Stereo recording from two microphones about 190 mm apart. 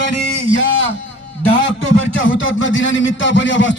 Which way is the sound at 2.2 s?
80° left.